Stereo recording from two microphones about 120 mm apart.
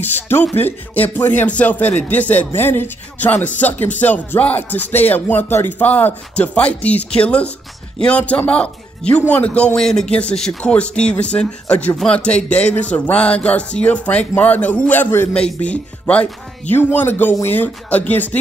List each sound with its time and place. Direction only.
0.0 s speech: 15° left (ahead or behind)